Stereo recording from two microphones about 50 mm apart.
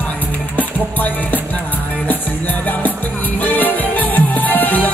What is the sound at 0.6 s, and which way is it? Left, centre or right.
Music, left.